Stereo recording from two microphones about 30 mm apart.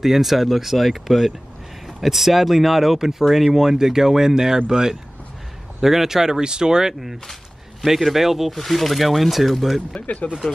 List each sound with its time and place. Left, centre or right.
0.0 s speech: centre
5.8 s speech: centre
7.8 s speech: centre
8.5 s speech: centre
10.0 s speech: left